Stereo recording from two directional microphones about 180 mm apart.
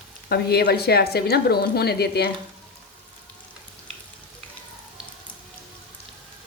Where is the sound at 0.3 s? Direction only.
60° left (ahead or behind).